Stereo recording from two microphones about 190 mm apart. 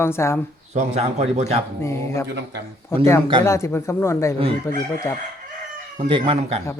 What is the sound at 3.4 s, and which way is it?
Speech, 15° left (ahead or behind).